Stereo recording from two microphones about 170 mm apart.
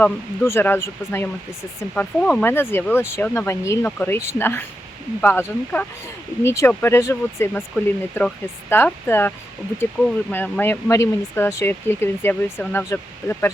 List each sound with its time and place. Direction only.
0.0 s speech: 10° left (ahead or behind)